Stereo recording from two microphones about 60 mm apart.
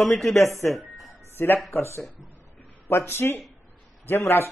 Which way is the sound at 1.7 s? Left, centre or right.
Left.